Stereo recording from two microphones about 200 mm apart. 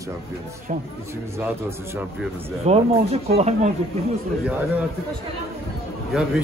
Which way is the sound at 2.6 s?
30° right (ahead or behind).